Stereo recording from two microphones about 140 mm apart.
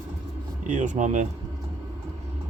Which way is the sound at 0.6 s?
60° right (ahead or behind).